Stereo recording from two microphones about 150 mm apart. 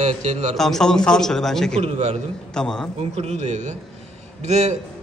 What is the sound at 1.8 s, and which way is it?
Speech, 45° right (ahead or behind).